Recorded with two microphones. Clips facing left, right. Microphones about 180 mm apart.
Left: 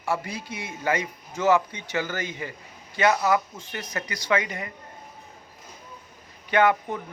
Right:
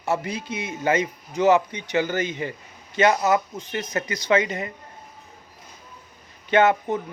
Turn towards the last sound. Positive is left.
turn(degrees=-25)  # may be behind; listen again after turning